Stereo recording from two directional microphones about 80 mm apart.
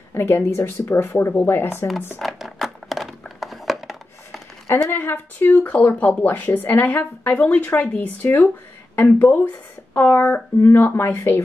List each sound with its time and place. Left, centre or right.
0.1 s speech: left
2.1 s a sound: centre
4.9 s speech: left